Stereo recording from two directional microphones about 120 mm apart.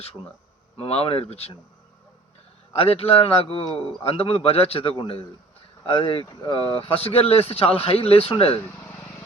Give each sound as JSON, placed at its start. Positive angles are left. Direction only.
{"t": 0.8, "sound": "a man's voice", "side_deg": 55}
{"t": 2.7, "sound": "a man's voice", "side_deg": 55}
{"t": 8.7, "sound": "vehicle", "side_deg": 20}